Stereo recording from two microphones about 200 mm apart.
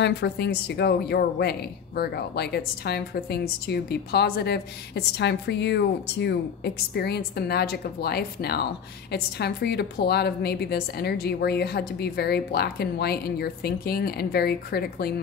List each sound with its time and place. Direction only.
0.0 s speech: 55° left (ahead or behind)